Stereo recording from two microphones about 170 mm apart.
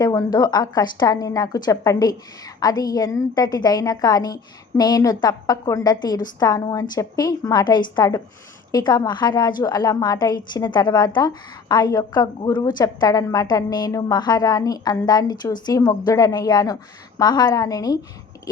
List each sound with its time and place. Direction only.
0.0 s a woman's voice: 20° left (ahead or behind)